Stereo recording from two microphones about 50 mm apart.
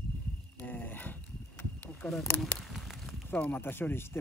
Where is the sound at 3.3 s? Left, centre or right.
Left.